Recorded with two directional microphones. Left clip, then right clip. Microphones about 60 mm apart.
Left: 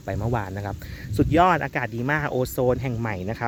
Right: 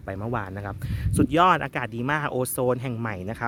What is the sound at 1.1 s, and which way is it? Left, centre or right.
Speech, right.